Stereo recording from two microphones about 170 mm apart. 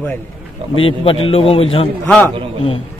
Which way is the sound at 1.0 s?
30° left (ahead or behind).